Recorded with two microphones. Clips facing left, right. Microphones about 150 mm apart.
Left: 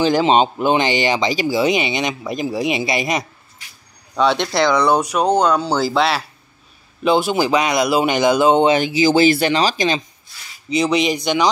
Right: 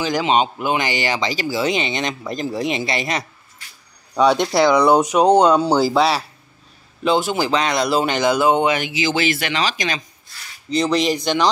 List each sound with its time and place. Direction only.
0.0 s speech: 30° left (ahead or behind)
4.1 s speech: 10° right (ahead or behind)
5.4 s speech: 5° right (ahead or behind)
5.7 s speech: 15° right (ahead or behind)
5.9 s speech: centre (ahead or behind)
7.0 s speech: 15° left (ahead or behind); by 10.0 s 30° left (ahead or behind)
10.7 s speech: 10° left (ahead or behind)